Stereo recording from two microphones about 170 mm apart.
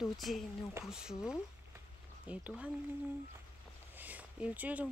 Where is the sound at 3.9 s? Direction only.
10° right (ahead or behind).